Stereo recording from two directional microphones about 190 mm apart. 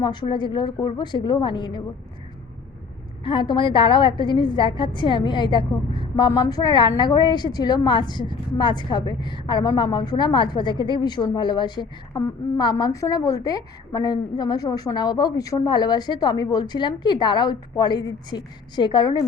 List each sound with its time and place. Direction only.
0.0 s a woman's voice: 25° left (ahead or behind)
3.2 s a woman's voice: 25° left (ahead or behind)